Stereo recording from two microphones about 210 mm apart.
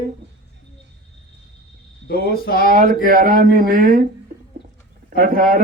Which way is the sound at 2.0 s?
45° left (ahead or behind).